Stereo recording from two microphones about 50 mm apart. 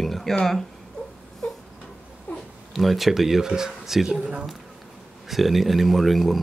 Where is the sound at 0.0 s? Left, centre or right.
Centre.